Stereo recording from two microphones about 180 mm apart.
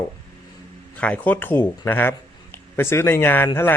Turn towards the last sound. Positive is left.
turn(degrees=15)  # may be behind; listen again after turning